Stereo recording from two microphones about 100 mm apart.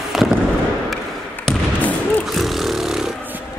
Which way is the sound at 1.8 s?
15° left (ahead or behind).